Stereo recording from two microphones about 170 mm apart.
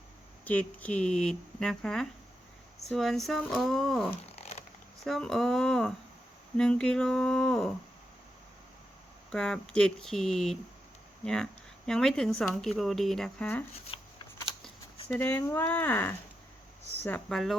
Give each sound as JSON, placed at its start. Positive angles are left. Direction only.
{"t": 0.4, "sound": "speech", "side_deg": 10}
{"t": 4.3, "sound": "a sound", "side_deg": 40}
{"t": 5.0, "sound": "speech", "side_deg": 0}
{"t": 9.3, "sound": "speech", "side_deg": 5}
{"t": 15.2, "sound": "speech", "side_deg": 10}